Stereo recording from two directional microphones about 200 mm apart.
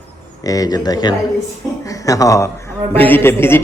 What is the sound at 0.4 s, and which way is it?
A man's voice, 20° left (ahead or behind).